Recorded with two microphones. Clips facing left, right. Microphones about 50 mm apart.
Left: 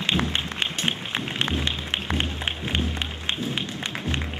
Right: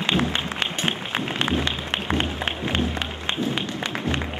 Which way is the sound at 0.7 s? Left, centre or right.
Centre.